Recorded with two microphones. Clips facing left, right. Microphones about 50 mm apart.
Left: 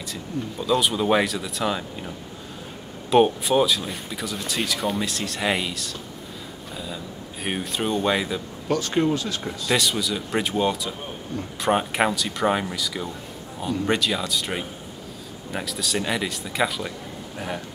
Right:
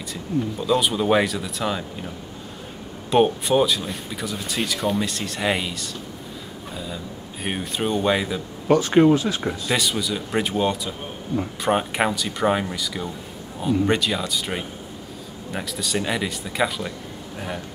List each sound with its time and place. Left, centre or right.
0.1 s speech: centre
7.4 s speech: centre
8.6 s speech: centre
9.7 s speech: centre